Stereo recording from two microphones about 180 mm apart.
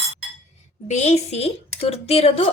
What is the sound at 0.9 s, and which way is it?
A woman's voice, 40° left (ahead or behind).